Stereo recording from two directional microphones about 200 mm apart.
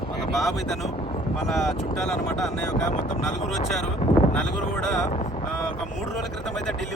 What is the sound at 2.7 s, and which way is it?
Speech, 40° left (ahead or behind).